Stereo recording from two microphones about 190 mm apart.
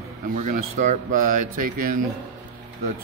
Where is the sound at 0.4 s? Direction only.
35° right (ahead or behind).